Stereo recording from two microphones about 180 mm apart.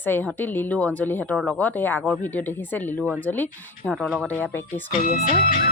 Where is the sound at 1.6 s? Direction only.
10° left (ahead or behind).